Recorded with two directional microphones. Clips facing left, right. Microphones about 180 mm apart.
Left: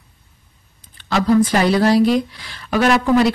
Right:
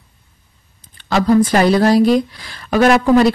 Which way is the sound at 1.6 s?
45° right (ahead or behind).